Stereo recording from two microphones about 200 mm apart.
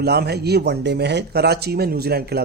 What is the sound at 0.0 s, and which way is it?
Speech, 55° right (ahead or behind).